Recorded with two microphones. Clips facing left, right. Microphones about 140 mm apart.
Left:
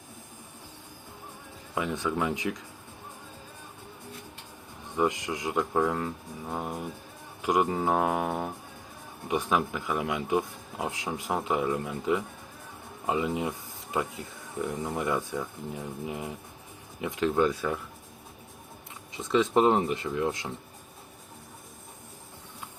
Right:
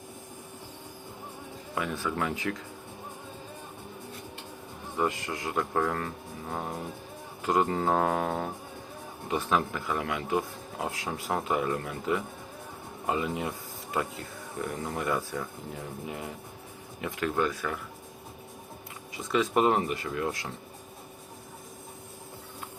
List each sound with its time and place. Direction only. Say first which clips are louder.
1.7 s speech: left 2 dB; 20° left (ahead or behind)
4.9 s speech: left 2 dB; 15° left (ahead or behind)
19.3 s speech: left 2 dB; 25° left (ahead or behind)